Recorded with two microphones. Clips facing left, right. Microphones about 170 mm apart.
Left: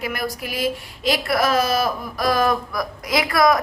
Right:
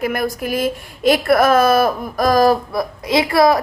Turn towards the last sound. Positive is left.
turn(degrees=-30)  # may be behind; listen again after turning